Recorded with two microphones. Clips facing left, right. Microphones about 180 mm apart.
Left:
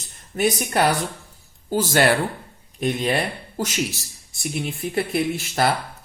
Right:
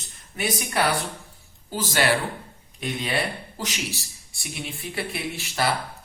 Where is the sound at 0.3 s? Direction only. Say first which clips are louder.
Left 8 dB; 45° left (ahead or behind).